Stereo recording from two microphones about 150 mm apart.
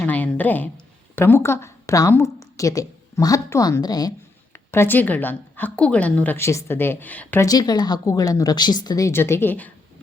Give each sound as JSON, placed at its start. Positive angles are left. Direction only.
{"t": 0.0, "sound": "a sound", "side_deg": 10}
{"t": 1.1, "sound": "a woman's voice", "side_deg": 15}
{"t": 4.5, "sound": "a woman's voice", "side_deg": 15}
{"t": 7.4, "sound": "a woman's voice", "side_deg": 25}